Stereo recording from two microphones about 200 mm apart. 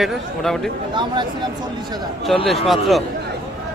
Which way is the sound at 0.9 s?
25° right (ahead or behind).